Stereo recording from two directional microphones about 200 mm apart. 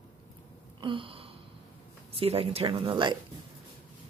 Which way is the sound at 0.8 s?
25° right (ahead or behind).